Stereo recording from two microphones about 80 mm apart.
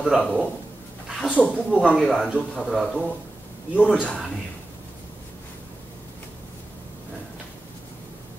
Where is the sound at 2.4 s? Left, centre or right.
Centre.